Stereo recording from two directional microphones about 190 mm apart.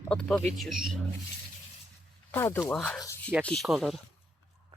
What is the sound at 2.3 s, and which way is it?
Speech, 15° left (ahead or behind).